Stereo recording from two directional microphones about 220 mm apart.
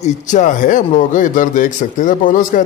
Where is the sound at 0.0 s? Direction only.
35° left (ahead or behind).